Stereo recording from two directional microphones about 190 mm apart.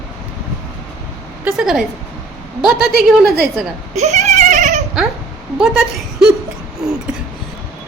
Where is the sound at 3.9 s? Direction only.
35° right (ahead or behind).